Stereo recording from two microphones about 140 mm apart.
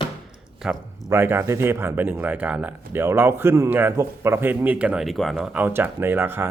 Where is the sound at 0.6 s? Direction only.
5° right (ahead or behind).